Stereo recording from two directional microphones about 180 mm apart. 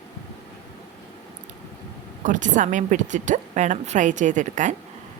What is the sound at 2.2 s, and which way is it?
A woman's voice, 45° right (ahead or behind).